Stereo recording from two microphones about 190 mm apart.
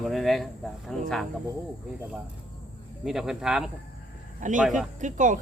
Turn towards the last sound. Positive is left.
turn(degrees=-40)  # may be behind; listen again after turning